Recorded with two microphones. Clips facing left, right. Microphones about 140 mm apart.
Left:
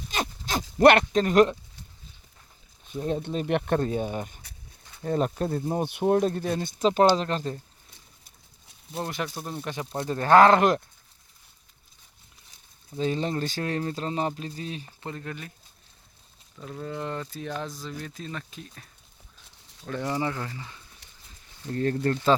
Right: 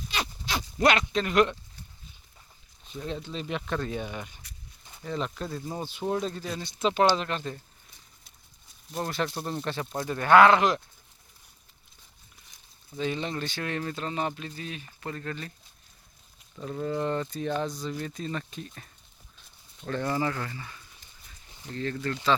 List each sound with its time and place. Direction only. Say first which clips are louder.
0.1 s a sound: left 3 dB; 45° left (ahead or behind)
0.8 s speech: left 7 dB; 55° left (ahead or behind)
1.2 s speech: left 3 dB; 40° left (ahead or behind)
3.1 s speech: left 7 dB; 50° left (ahead or behind)
3.8 s speech: left 5 dB; 40° left (ahead or behind)
9.0 s speech: right 1 dB; 15° left (ahead or behind)
10.0 s speech: left 1 dB; 35° left (ahead or behind); by 10.8 s 50° left (ahead or behind)
13.0 s speech: left 4 dB; 40° left (ahead or behind)
15.0 s speech: right 2 dB; 15° left (ahead or behind)
16.6 s speech: right 4 dB; 5° right (ahead or behind)
19.9 s speech: even; 10° left (ahead or behind)
21.0 s pig: left 1 dB; 70° left (ahead or behind)
21.7 s speech: left 6 dB; 45° left (ahead or behind)